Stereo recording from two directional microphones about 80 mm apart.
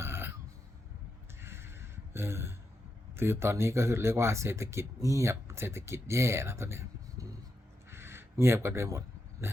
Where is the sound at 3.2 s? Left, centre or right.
Right.